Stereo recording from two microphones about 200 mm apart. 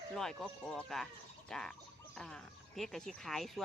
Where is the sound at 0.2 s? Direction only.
Centre (ahead or behind).